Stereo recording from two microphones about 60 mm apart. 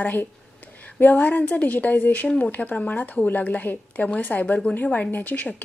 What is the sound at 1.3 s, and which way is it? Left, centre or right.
Speech, left.